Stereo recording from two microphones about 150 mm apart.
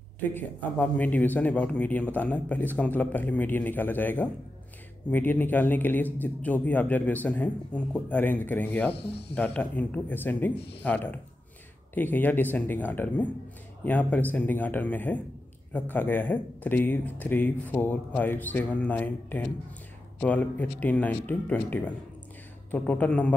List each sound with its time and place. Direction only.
0.3 s a man's voice: 10° left (ahead or behind)
8.9 s speech: 90° left
9.3 s a man's voice: 10° left (ahead or behind)